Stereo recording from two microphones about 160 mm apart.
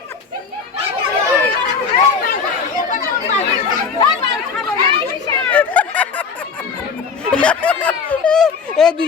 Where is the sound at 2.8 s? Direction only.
50° left (ahead or behind).